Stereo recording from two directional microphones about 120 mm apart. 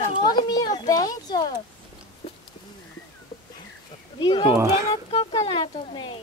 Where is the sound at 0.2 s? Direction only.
40° left (ahead or behind).